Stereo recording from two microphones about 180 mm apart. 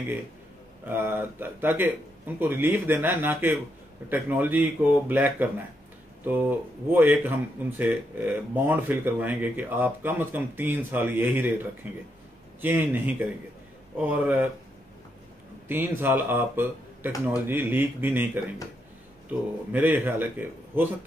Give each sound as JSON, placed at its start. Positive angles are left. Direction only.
{"t": 0.8, "sound": "speech", "side_deg": -10}
{"t": 15.7, "sound": "speech", "side_deg": -10}
{"t": 19.7, "sound": "speech", "side_deg": -10}